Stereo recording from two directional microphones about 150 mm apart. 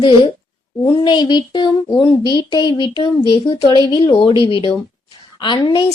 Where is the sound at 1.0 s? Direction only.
30° left (ahead or behind).